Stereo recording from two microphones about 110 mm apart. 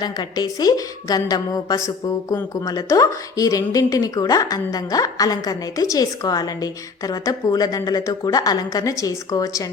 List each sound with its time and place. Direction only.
0.0 s speech: 35° left (ahead or behind)